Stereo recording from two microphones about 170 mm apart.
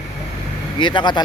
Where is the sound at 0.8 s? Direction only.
30° left (ahead or behind).